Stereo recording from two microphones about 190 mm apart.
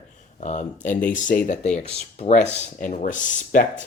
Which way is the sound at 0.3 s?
40° left (ahead or behind).